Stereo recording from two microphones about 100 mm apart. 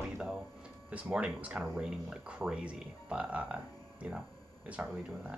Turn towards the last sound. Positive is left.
turn(degrees=-10)  # may be behind; listen again after turning